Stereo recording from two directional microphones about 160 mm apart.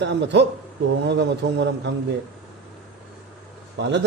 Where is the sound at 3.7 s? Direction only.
90° right.